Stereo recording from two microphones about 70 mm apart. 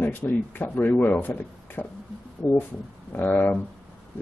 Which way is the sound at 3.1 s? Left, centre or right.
Left.